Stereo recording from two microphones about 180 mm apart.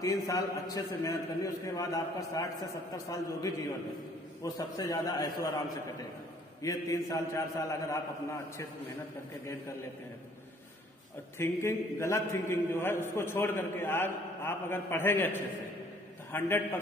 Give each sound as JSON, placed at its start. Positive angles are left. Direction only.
{"t": 0.0, "sound": "a man's voice", "side_deg": 20}
{"t": 6.6, "sound": "a man's voice", "side_deg": 20}
{"t": 11.3, "sound": "a man's voice", "side_deg": 15}